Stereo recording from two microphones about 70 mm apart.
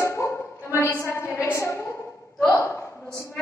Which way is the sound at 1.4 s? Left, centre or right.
Left.